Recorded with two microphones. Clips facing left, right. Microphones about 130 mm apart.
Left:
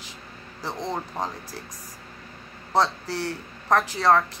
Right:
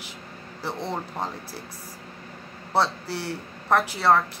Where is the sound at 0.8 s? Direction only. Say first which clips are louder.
Left 2 dB; 15° left (ahead or behind).